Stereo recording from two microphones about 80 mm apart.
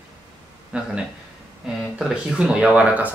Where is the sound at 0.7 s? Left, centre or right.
Centre.